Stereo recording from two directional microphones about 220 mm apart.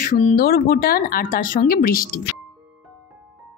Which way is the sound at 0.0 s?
35° left (ahead or behind).